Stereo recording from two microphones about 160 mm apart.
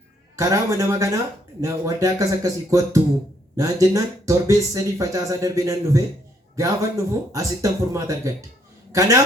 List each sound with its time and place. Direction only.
0.3 s a man's voice: 20° right (ahead or behind)